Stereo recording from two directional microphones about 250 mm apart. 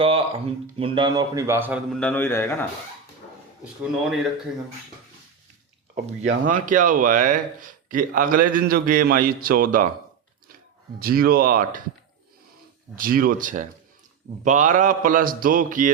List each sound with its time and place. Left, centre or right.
0.0 s speech: right; by 2.6 s centre
6.4 s speech: right
11.0 s speech: right
13.0 s speech: right